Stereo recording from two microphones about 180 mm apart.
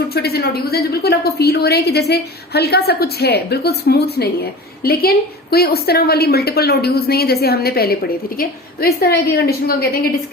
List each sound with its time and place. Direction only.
0.1 s a woman's voice: 60° left (ahead or behind)